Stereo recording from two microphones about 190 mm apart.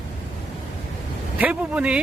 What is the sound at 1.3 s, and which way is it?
Speech, 5° right (ahead or behind).